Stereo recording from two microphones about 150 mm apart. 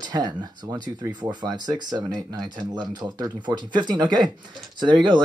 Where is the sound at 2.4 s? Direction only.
30° right (ahead or behind).